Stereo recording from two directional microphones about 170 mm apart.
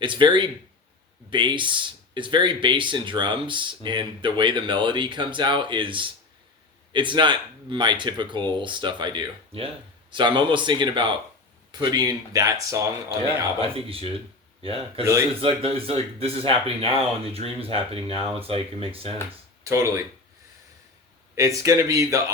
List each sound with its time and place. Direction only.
0.0 s speech: 30° right (ahead or behind)
13.7 s speech: 35° right (ahead or behind)
19.6 s speech: 15° right (ahead or behind)
21.3 s speech: 20° right (ahead or behind)